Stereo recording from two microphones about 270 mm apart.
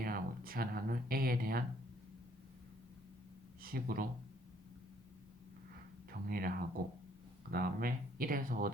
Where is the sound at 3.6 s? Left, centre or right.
Right.